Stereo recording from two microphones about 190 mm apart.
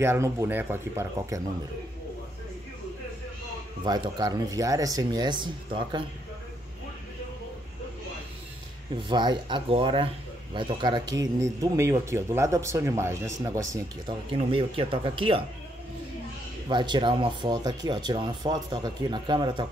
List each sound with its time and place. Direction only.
0.0 s speech: 15° right (ahead or behind)
3.8 s speech: 20° right (ahead or behind)
8.9 s speech: 25° right (ahead or behind)
16.6 s speech: 25° right (ahead or behind)